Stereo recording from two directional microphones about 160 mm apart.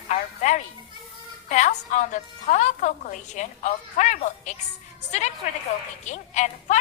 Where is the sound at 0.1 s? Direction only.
50° left (ahead or behind).